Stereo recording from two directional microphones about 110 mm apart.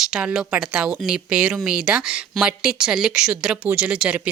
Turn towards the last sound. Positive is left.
turn(degrees=-10)  # may be behind; listen again after turning